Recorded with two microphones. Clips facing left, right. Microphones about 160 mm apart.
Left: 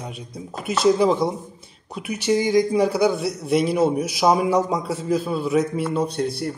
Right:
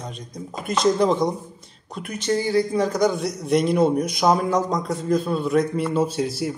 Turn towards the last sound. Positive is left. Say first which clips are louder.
# right 1 dB
turn(degrees=0)  # may be behind; listen again after turning